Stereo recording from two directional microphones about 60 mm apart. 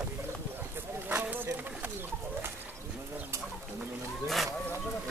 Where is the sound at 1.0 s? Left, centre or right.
Right.